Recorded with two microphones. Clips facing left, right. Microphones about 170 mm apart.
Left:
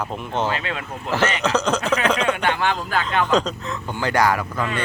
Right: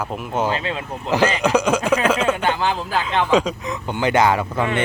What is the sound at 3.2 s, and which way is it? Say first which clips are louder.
Speech: right 4 dB; 10° right (ahead or behind).